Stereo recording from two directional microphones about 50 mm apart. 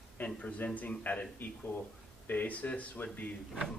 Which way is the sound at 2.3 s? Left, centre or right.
Left.